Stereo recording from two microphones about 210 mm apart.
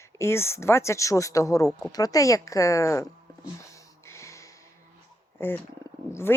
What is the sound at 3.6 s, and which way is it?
Music, 15° left (ahead or behind).